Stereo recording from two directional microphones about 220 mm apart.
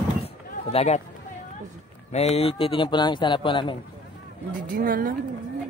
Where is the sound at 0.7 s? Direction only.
30° left (ahead or behind).